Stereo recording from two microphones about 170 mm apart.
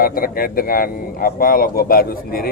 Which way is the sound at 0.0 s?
60° left (ahead or behind).